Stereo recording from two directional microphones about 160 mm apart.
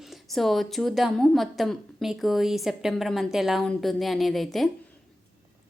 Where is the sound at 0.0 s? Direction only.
Centre (ahead or behind).